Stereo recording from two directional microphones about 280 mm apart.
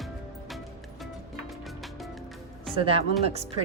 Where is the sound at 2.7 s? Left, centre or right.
Centre.